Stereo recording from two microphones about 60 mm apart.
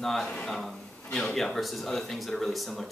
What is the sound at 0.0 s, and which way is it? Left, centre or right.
Speech, centre.